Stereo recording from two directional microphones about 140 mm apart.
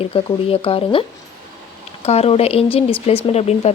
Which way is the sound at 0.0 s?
40° left (ahead or behind).